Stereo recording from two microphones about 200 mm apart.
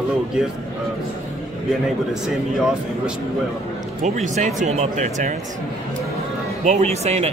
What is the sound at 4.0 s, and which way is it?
Speech, 35° right (ahead or behind).